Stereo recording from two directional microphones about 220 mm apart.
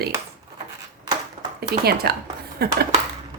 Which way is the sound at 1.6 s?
45° right (ahead or behind).